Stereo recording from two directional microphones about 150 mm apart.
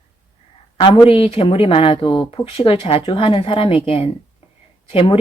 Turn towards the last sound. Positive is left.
turn(degrees=40)  # may be behind; listen again after turning